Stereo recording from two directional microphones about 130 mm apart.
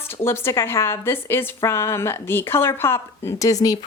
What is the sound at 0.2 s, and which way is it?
A woman's voice, 20° left (ahead or behind).